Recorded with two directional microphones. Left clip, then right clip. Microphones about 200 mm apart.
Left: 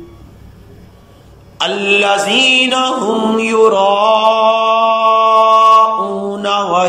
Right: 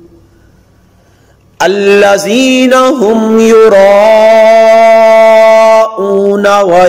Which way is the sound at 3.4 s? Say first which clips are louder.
Right 8 dB; 50° right (ahead or behind).